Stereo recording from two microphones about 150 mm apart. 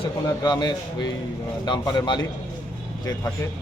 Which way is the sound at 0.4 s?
30° left (ahead or behind).